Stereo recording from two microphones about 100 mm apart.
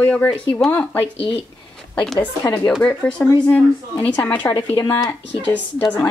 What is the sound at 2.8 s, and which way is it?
Speech, 10° left (ahead or behind).